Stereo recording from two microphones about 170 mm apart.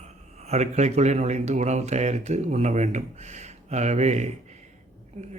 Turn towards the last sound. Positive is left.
turn(degrees=-45)  # may be behind; listen again after turning